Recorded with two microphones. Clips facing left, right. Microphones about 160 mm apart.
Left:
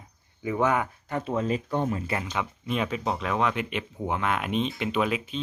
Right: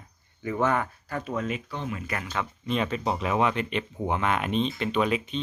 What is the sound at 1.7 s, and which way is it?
Speech, 50° left (ahead or behind).